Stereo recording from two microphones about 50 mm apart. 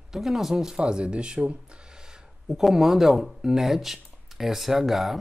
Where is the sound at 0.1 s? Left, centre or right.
Centre.